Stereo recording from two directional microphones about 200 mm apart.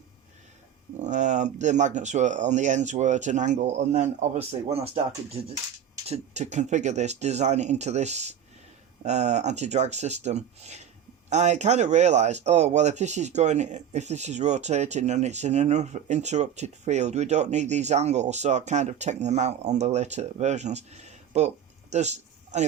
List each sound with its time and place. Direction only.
0.9 s speech: 35° right (ahead or behind)